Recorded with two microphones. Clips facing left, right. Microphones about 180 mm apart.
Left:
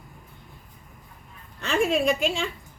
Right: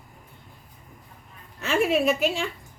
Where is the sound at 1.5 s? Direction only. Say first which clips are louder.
Right 1 dB; 5° right (ahead or behind).